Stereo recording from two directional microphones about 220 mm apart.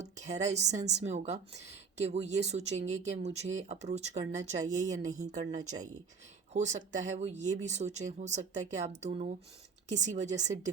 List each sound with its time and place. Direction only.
0.0 s a woman's voice: 30° right (ahead or behind)